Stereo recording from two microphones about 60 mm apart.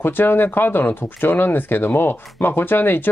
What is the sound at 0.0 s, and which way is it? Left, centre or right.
Speech, left.